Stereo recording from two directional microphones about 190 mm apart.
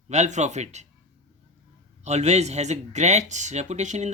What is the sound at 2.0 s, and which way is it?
Speech, 35° right (ahead or behind).